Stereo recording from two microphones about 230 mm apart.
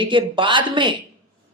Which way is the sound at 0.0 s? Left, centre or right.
Right.